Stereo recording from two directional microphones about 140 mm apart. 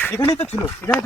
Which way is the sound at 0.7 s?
15° left (ahead or behind).